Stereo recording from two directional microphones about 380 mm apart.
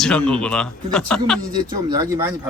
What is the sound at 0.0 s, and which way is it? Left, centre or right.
Speech, centre.